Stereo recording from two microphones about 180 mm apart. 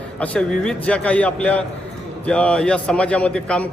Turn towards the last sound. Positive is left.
turn(degrees=5)  # may be behind; listen again after turning